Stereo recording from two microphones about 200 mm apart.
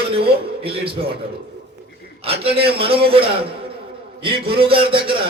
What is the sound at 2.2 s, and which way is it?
A man's voice, 30° right (ahead or behind).